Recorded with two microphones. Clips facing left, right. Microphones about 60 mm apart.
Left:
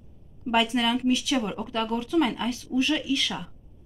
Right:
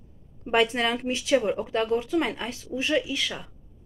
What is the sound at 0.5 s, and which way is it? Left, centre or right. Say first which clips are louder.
Speech: even; right.